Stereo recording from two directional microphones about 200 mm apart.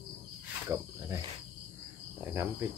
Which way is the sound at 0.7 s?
15° right (ahead or behind).